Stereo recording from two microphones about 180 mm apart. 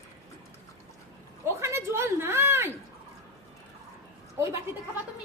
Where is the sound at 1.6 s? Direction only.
15° right (ahead or behind).